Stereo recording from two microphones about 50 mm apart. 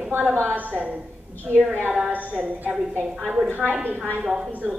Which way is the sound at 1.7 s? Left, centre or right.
Right.